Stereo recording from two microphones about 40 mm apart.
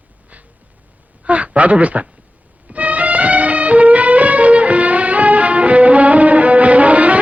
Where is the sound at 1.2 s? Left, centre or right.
Right.